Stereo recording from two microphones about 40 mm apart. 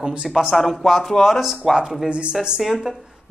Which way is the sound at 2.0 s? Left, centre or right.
Right.